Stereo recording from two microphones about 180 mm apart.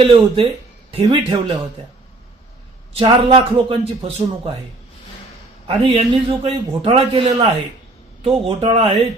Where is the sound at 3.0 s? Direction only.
30° right (ahead or behind).